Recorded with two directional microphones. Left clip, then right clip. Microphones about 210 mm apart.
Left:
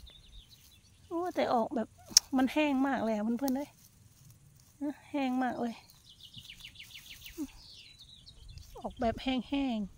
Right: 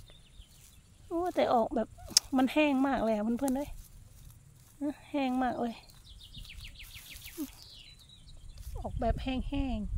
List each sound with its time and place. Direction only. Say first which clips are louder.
1.0 s speech: right 3 dB; 5° right (ahead or behind)
4.7 s speech: right 2 dB; 5° right (ahead or behind)
6.8 s insect: even; 25° right (ahead or behind)
8.7 s speech: even; 10° left (ahead or behind)